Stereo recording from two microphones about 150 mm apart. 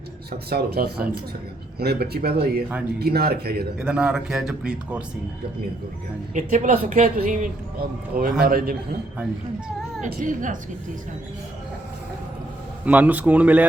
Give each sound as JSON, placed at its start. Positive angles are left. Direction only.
{"t": 0.3, "sound": "speech", "side_deg": -90}
{"t": 3.8, "sound": "speech", "side_deg": -5}
{"t": 6.3, "sound": "speech", "side_deg": -55}
{"t": 8.1, "sound": "a man's voice", "side_deg": -85}
{"t": 10.0, "sound": "speech", "side_deg": -60}
{"t": 12.8, "sound": "a man's voice", "side_deg": -10}